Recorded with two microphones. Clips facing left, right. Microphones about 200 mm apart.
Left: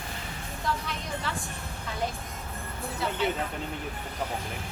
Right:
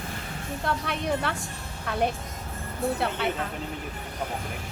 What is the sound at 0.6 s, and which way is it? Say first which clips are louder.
Speech: right 4 dB; 60° right (ahead or behind).